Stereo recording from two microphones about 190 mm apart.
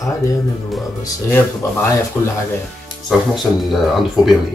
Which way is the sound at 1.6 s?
15° left (ahead or behind).